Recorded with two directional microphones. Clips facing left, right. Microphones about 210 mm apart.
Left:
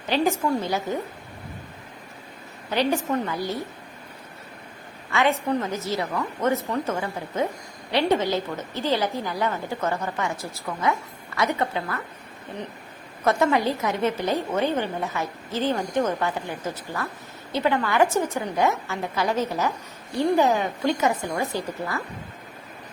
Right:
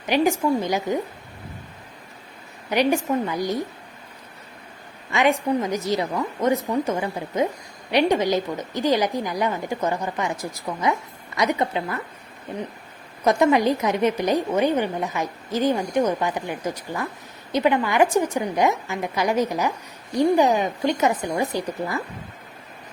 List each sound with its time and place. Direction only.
0.1 s a woman's voice: 15° right (ahead or behind)
2.6 s a woman's voice: 15° right (ahead or behind)
5.1 s a woman's voice: 15° right (ahead or behind)
13.2 s a woman's voice: 15° right (ahead or behind)